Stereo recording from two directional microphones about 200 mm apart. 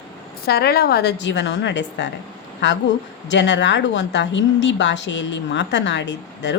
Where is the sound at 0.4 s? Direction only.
50° left (ahead or behind).